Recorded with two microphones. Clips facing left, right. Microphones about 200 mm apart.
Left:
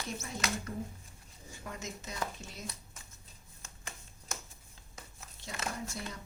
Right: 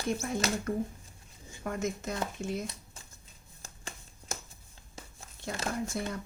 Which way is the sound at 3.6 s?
30° right (ahead or behind).